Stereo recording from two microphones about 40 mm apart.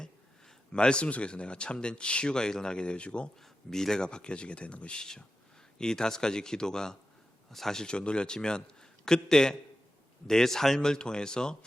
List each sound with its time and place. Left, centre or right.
0.7 s speech: left
3.7 s speech: centre; by 4.9 s left
4.9 s speech: centre
10.8 s speech: left